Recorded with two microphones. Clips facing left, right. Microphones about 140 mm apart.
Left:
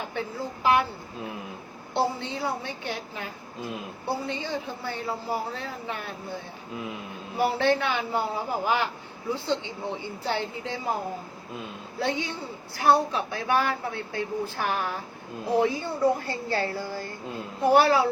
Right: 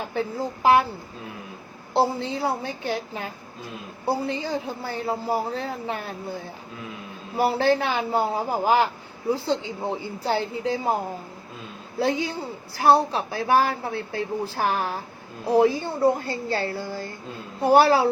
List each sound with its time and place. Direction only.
0.1 s a woman's voice: 35° right (ahead or behind)
1.9 s a woman's voice: 35° right (ahead or behind)
4.3 s a woman's voice: 40° right (ahead or behind)
7.3 s a woman's voice: 35° right (ahead or behind)
11.9 s a woman's voice: 35° right (ahead or behind)